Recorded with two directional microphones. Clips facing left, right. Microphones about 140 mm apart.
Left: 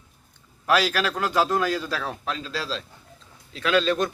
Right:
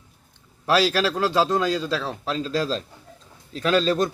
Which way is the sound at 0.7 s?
35° right (ahead or behind).